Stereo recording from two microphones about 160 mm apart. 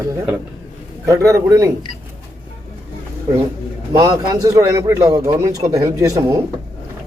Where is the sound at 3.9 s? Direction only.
20° right (ahead or behind).